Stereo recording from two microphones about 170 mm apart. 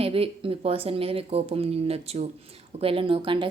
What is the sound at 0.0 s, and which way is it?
Speech, 35° right (ahead or behind).